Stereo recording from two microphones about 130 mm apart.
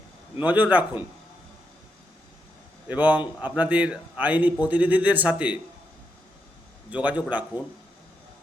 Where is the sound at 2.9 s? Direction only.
10° right (ahead or behind).